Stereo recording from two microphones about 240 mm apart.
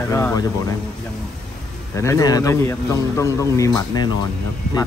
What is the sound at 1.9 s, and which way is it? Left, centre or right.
A man's voice, centre.